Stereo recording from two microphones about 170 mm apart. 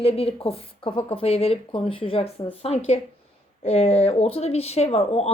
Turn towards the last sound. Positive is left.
turn(degrees=35)  # may be behind; listen again after turning